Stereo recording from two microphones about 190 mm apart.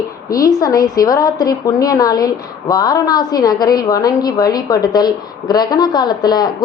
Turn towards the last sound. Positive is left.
turn(degrees=20)  # may be behind; listen again after turning